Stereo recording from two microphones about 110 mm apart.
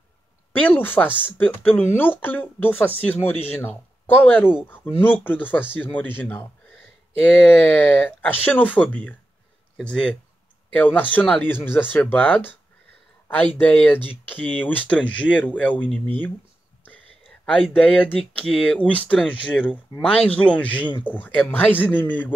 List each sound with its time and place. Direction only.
0.6 s speech: 15° left (ahead or behind)
13.6 s speech: 15° left (ahead or behind)
17.7 s speech: 10° left (ahead or behind)